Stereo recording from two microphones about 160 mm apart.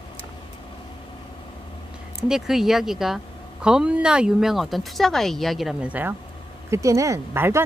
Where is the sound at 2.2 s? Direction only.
5° right (ahead or behind).